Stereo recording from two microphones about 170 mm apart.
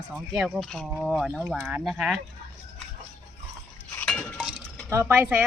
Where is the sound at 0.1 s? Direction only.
5° right (ahead or behind).